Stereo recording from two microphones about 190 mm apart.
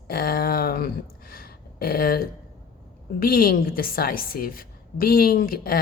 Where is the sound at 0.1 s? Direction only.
50° left (ahead or behind).